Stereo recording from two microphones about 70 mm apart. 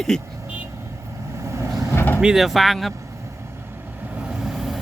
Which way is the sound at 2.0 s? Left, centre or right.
Left.